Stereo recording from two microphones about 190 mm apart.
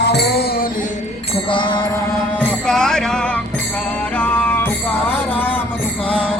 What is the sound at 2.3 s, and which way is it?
Music, 5° left (ahead or behind).